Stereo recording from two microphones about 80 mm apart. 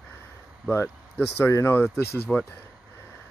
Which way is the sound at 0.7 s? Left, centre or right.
Left.